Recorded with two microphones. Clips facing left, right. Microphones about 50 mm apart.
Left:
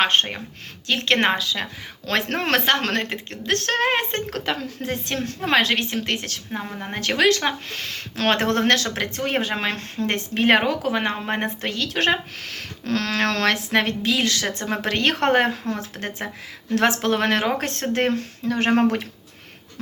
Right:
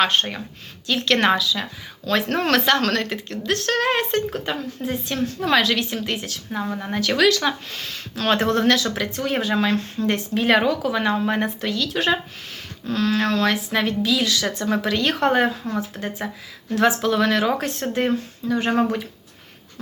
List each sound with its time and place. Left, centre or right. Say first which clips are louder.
0.0 s a woman's voice: even; left
2.0 s a woman's voice: right 2 dB; left
4.3 s speech: even; left
5.4 s a woman's voice: even; left
6.1 s speech: even; left
6.9 s speech: right 1 dB; left
12.5 s speech: left 3 dB; left